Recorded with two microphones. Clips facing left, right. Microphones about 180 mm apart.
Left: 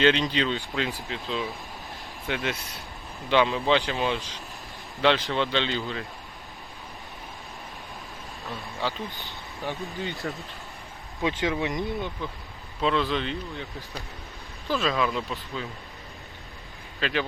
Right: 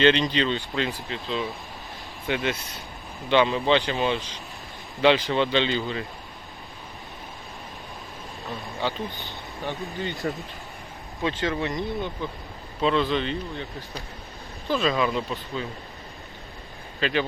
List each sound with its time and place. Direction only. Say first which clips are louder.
0.0 s speech: right 2 dB; 5° left (ahead or behind)
8.4 s speech: right 2 dB; centre (ahead or behind)
11.2 s speech: even; 15° left (ahead or behind)
12.8 s speech: right 2 dB; centre (ahead or behind)
17.0 s speech: right 3 dB; centre (ahead or behind)